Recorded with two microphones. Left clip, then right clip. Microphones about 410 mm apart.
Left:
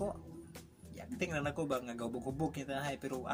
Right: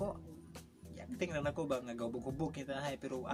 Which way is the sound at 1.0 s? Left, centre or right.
Right.